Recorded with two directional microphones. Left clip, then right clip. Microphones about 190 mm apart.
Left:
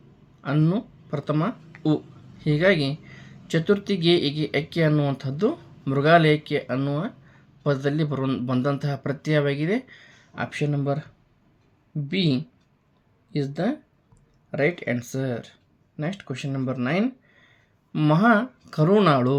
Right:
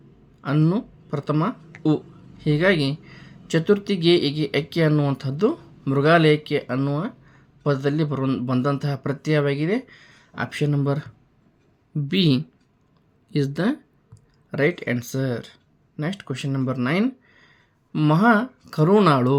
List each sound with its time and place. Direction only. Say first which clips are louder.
0.4 s speech: right 2 dB; 15° right (ahead or behind); by 13.7 s 35° right (ahead or behind)
14.5 s speech: right 2 dB; 20° right (ahead or behind)